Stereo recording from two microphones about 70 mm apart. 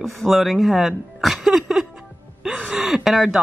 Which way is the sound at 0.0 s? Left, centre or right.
Centre.